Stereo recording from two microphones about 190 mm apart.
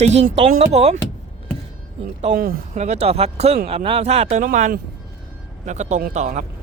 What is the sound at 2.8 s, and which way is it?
Speech, 35° right (ahead or behind).